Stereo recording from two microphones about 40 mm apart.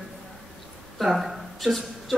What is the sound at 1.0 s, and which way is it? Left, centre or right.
Speech, centre.